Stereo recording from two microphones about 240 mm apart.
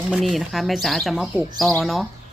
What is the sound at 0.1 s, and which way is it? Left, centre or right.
Speech, centre.